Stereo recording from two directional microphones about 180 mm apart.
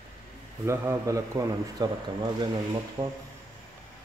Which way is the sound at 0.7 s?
15° right (ahead or behind).